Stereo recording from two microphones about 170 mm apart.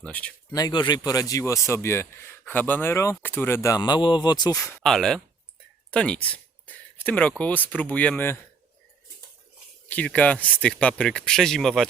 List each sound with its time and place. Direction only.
0.0 s speech: 10° left (ahead or behind)
0.5 s speech: 25° left (ahead or behind)
4.8 s speech: centre (ahead or behind)
5.9 s a sound: 5° left (ahead or behind)
7.0 s speech: 10° left (ahead or behind)
9.9 s speech: 10° left (ahead or behind)